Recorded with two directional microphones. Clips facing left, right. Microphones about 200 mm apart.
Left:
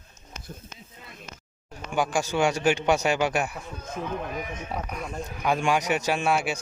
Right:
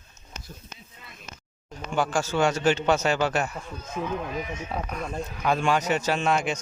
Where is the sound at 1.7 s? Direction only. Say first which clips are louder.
Even; 10° left (ahead or behind).